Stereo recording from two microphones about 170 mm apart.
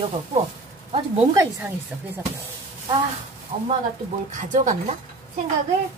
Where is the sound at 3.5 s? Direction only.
35° right (ahead or behind).